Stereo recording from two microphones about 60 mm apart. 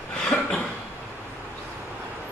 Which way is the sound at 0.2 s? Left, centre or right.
Centre.